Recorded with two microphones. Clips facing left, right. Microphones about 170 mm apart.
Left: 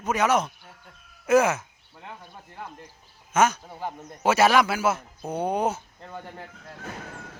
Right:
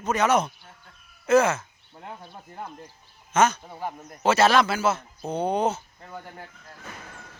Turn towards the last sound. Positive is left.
turn(degrees=10)  # may be behind; listen again after turning